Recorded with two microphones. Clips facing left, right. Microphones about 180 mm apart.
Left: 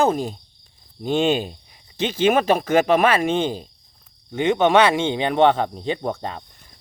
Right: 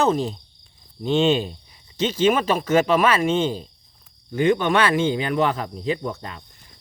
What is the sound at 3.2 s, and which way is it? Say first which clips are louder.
Speech: even; 55° left (ahead or behind).